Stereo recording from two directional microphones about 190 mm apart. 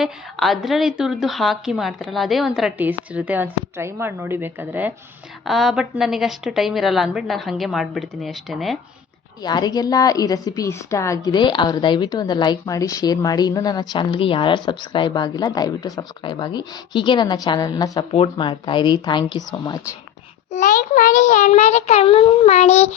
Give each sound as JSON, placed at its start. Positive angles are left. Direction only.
{"t": 0.0, "sound": "a woman's voice", "side_deg": 0}
{"t": 9.4, "sound": "a woman's voice", "side_deg": 20}
{"t": 18.1, "sound": "a woman's voice", "side_deg": 30}
{"t": 20.5, "sound": "a child's voice", "side_deg": 45}